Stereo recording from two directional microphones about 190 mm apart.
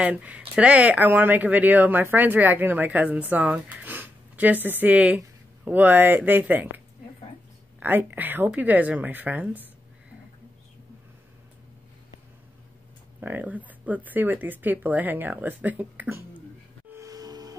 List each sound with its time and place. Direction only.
0.0 s speech: 10° right (ahead or behind)
7.8 s speech: 10° right (ahead or behind)
13.2 s speech: 10° right (ahead or behind)
16.9 s gasp: 20° right (ahead or behind)